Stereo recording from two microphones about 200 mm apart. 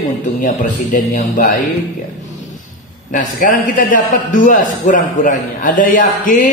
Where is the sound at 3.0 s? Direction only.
40° left (ahead or behind).